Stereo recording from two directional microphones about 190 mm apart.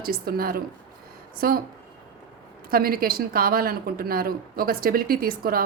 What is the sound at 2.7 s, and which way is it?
A woman's voice, 50° right (ahead or behind).